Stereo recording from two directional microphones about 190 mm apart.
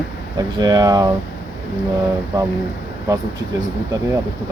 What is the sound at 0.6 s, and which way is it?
Speech, 20° right (ahead or behind).